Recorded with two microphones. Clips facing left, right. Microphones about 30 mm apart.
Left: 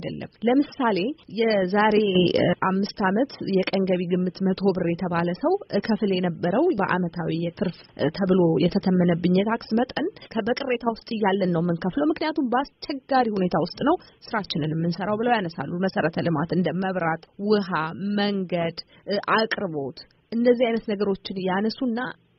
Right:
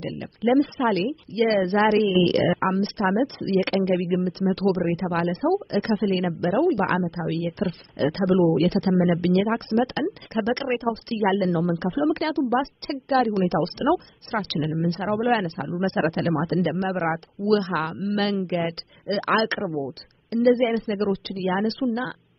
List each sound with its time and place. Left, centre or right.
0.0 s a woman's voice: centre
21.8 s a woman's voice: left